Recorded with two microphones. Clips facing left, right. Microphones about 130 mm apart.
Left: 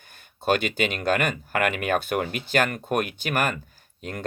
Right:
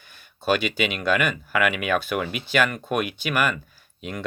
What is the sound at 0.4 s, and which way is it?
Speech, 55° left (ahead or behind).